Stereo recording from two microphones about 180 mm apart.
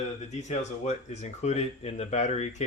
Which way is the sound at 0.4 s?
40° left (ahead or behind).